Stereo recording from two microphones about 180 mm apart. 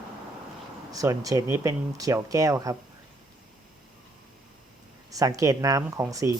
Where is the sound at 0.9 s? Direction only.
20° right (ahead or behind).